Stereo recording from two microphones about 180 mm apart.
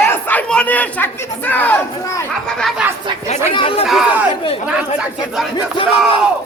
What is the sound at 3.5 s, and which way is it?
Speech, 30° left (ahead or behind).